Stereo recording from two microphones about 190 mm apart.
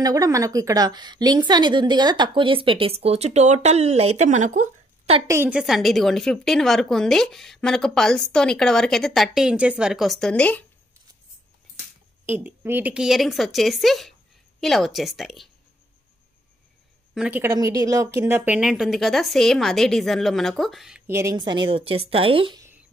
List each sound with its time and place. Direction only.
0.0 s a woman's voice: 20° right (ahead or behind); by 5.2 s 35° right (ahead or behind)
5.2 s a woman's voice: 15° right (ahead or behind); by 10.6 s 5° left (ahead or behind)
12.3 s a woman's voice: 10° right (ahead or behind)
17.1 s a woman's voice: 5° right (ahead or behind)
21.1 s a woman's voice: 15° right (ahead or behind)